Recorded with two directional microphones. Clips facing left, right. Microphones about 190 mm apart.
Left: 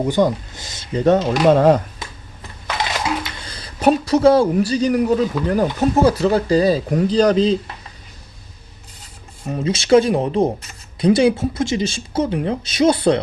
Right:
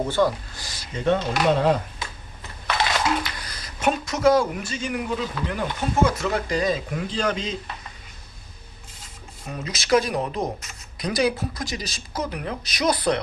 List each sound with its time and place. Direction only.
0.0 s speech: 15° left (ahead or behind)
0.9 s speech: 40° left (ahead or behind)
3.4 s a man's voice: 30° left (ahead or behind)
9.5 s speech: 30° left (ahead or behind)